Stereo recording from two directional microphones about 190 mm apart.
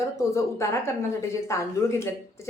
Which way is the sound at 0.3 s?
15° left (ahead or behind).